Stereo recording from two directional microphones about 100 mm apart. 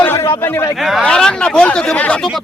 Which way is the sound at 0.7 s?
Centre (ahead or behind).